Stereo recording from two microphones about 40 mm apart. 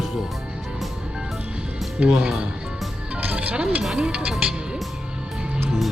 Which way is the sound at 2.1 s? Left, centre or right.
Right.